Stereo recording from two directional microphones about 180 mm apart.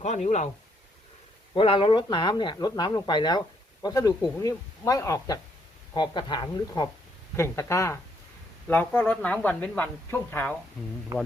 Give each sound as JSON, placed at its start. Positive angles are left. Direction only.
{"t": 0.0, "sound": "speech", "side_deg": 40}
{"t": 1.5, "sound": "speech", "side_deg": 30}
{"t": 11.1, "sound": "speech", "side_deg": -20}